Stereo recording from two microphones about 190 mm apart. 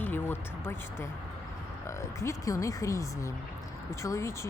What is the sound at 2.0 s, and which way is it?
Speech, 15° left (ahead or behind).